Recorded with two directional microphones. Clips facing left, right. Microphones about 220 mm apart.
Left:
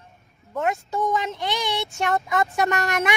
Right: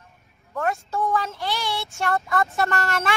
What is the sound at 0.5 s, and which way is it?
Speech, 15° left (ahead or behind).